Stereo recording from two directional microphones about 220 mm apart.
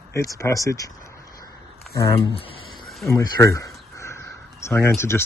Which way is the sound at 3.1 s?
15° left (ahead or behind).